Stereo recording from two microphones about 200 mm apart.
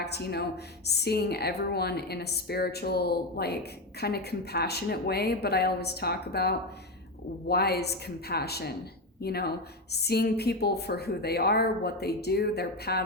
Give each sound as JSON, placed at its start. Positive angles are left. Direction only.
{"t": 0.0, "sound": "a woman's voice", "side_deg": 55}